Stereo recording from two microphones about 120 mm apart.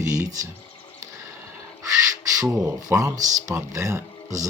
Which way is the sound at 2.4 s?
30° right (ahead or behind).